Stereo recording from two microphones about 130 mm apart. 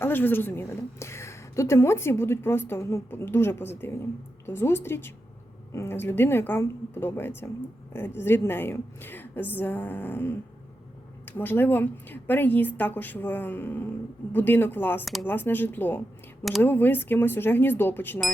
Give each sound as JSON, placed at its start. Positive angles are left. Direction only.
{"t": 0.0, "sound": "a woman's voice", "side_deg": 15}
{"t": 15.0, "sound": "speech", "side_deg": 0}
{"t": 15.3, "sound": "a woman's voice", "side_deg": 15}